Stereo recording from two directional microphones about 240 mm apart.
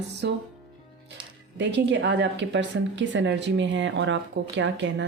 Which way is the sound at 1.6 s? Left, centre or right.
Right.